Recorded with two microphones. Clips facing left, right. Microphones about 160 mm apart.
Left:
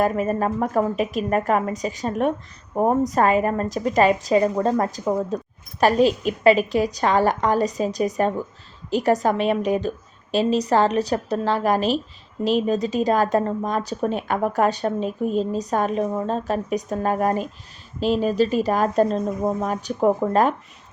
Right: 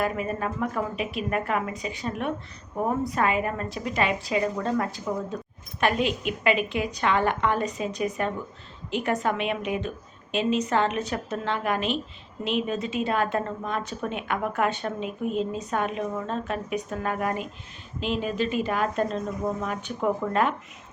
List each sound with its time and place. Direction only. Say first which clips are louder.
0.0 s a woman's voice: left 7 dB; 40° left (ahead or behind)